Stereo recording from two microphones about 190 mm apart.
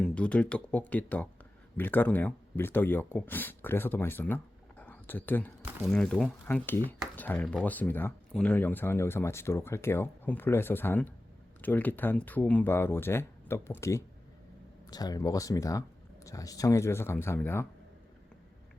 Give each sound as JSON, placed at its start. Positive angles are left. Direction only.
{"t": 0.0, "sound": "speech", "side_deg": 5}
{"t": 4.8, "sound": "a sound", "side_deg": 10}
{"t": 5.6, "sound": "speech", "side_deg": 0}